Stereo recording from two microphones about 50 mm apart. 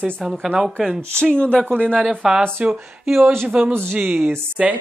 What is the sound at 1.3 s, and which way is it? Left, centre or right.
Speech, centre.